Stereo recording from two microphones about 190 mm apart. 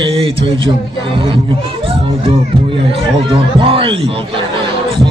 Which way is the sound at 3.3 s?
30° right (ahead or behind).